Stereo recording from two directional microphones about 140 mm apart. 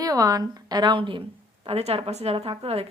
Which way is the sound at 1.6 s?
45° right (ahead or behind).